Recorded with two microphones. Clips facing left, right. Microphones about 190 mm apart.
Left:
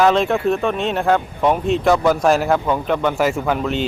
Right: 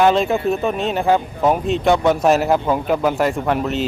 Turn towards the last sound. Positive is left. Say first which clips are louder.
# even
turn(degrees=0)  # may be behind; listen again after turning